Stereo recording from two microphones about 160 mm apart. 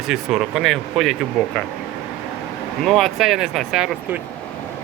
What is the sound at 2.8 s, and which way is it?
Speech, centre (ahead or behind).